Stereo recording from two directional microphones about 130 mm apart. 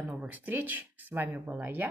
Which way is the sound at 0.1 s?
15° right (ahead or behind).